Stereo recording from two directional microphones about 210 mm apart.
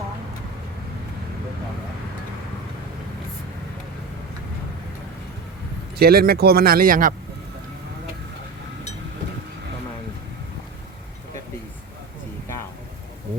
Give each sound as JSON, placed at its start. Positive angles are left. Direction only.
{"t": 6.0, "sound": "speech", "side_deg": -45}